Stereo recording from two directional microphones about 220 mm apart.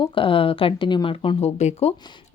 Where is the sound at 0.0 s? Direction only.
25° left (ahead or behind).